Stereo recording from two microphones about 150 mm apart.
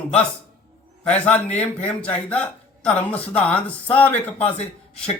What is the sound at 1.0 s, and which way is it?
A man's voice, 10° left (ahead or behind).